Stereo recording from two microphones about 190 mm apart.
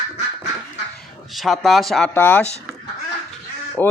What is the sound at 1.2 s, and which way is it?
Speech, centre (ahead or behind).